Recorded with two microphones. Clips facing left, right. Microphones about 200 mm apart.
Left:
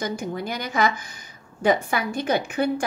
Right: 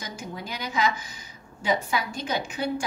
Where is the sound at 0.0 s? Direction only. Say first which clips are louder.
Left 9 dB; 60° left (ahead or behind).